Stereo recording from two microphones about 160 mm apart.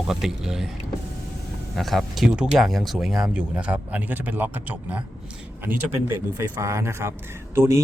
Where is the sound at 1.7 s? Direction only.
Centre (ahead or behind).